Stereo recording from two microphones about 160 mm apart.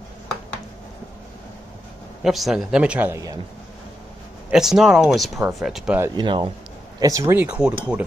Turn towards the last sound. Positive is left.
turn(degrees=-5)  # may be behind; listen again after turning